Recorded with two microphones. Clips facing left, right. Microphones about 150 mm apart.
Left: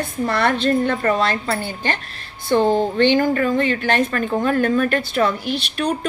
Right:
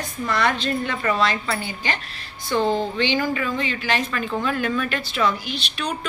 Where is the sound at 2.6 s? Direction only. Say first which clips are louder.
Left 4 dB; 15° left (ahead or behind).